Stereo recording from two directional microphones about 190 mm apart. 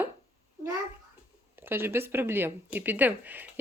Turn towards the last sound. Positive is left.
turn(degrees=-10)  # may be behind; listen again after turning